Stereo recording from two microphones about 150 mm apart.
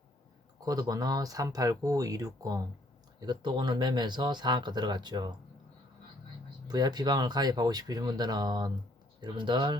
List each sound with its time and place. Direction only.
0.6 s speech: 25° right (ahead or behind)
6.7 s speech: 25° right (ahead or behind)